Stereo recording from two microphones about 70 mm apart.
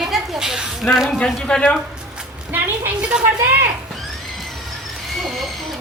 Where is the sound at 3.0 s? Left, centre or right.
Centre.